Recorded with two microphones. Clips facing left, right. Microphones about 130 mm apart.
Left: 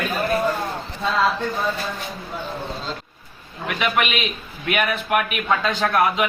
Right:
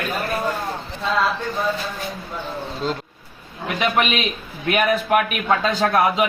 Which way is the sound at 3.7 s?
35° right (ahead or behind).